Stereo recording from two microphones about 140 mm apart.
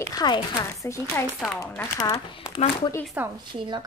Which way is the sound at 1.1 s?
15° left (ahead or behind).